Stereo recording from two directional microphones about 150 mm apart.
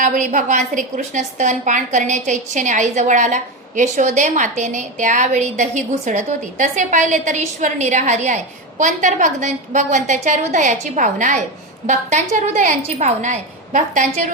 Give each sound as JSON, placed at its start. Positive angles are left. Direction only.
{"t": 0.0, "sound": "a woman's voice", "side_deg": -60}